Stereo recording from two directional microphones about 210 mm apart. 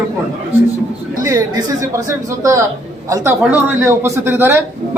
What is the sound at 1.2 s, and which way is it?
A man's voice, 15° right (ahead or behind).